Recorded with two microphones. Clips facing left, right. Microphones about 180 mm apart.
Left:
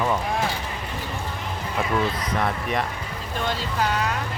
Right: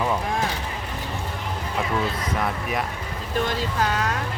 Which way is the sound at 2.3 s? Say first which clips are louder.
Left 2 dB; 5° right (ahead or behind).